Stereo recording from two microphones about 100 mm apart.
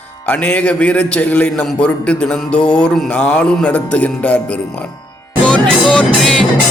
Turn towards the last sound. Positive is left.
turn(degrees=5)  # may be behind; listen again after turning